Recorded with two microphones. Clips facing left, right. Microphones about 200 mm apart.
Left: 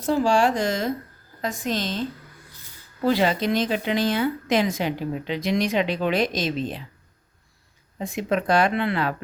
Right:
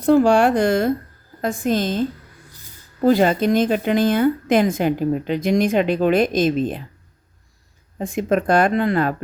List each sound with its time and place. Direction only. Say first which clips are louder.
0.0 s a woman's voice: right 6 dB; 60° right (ahead or behind)
7.9 s a woman's voice: right 5 dB; 50° right (ahead or behind)